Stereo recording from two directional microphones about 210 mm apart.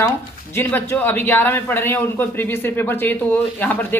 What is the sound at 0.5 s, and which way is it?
A man's voice, 10° left (ahead or behind).